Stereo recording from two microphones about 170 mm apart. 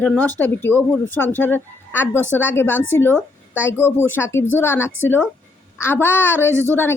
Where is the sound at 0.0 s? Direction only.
10° left (ahead or behind).